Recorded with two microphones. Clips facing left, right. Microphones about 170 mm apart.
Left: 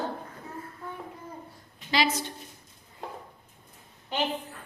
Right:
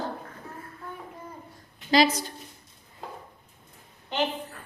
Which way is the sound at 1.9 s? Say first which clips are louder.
Right 5 dB; 40° right (ahead or behind).